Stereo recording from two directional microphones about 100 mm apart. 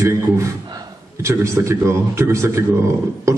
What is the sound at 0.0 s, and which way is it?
A man's voice, 30° right (ahead or behind).